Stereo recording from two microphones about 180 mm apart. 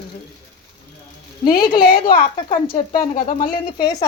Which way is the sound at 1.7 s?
55° left (ahead or behind).